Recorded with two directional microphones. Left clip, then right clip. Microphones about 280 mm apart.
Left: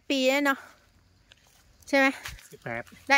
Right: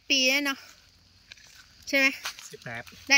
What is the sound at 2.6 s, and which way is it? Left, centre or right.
Speech, left.